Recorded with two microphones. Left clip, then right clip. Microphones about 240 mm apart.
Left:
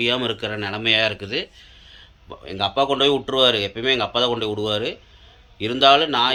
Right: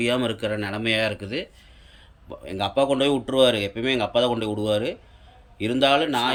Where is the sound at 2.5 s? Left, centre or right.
Centre.